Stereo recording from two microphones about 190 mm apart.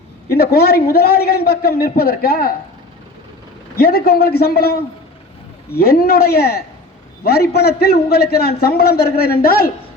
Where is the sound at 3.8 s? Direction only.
55° left (ahead or behind).